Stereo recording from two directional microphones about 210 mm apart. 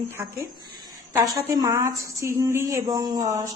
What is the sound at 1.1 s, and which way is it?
A woman's voice, 15° right (ahead or behind).